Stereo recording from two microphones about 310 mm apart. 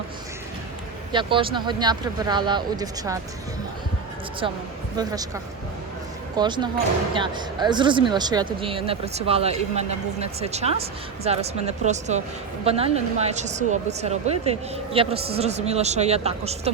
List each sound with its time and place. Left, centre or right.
1.1 s speech: centre
4.9 s speech: centre